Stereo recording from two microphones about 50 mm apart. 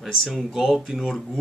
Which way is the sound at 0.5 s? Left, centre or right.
Centre.